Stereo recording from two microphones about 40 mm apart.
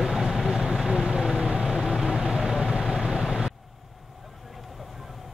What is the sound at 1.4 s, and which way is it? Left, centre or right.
Vehicle, right.